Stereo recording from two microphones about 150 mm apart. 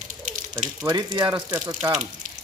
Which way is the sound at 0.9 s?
25° right (ahead or behind).